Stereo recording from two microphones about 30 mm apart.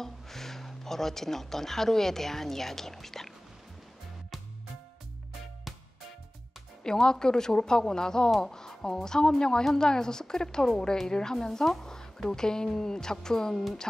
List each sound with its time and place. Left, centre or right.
0.0 s speech: centre
6.8 s a woman's voice: left